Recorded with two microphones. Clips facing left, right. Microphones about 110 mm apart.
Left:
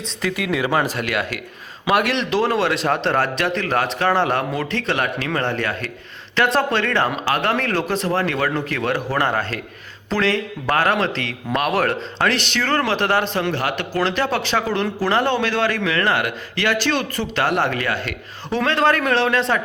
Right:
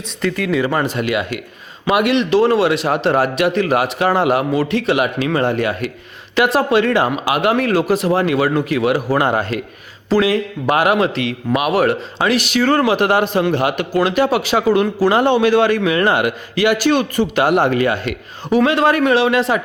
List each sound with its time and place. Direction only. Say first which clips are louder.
0.2 s speech: right 4 dB; 5° left (ahead or behind)